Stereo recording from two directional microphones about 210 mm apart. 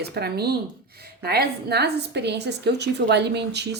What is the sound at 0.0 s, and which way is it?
A woman's voice, 50° right (ahead or behind).